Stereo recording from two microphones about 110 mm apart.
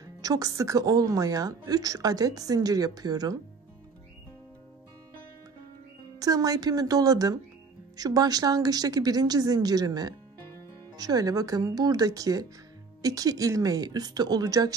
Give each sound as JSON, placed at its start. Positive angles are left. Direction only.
{"t": 0.0, "sound": "a woman's voice", "side_deg": -35}
{"t": 6.1, "sound": "a woman's voice", "side_deg": -35}